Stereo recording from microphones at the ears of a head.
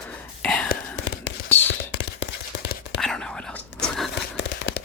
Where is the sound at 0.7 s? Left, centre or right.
Left.